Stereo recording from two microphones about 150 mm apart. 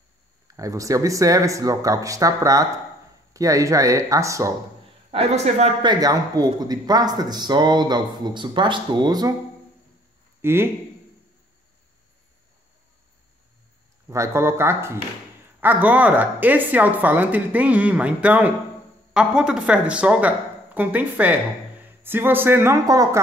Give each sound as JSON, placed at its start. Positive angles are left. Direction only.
{"t": 0.6, "sound": "speech", "side_deg": -20}
{"t": 5.1, "sound": "speech", "side_deg": -45}
{"t": 5.8, "sound": "speech", "side_deg": -25}
{"t": 10.4, "sound": "a woman's voice", "side_deg": -15}
{"t": 14.0, "sound": "a woman's voice", "side_deg": -20}